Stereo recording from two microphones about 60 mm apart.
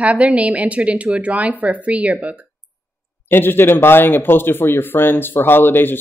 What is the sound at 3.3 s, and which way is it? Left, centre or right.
Speech, left.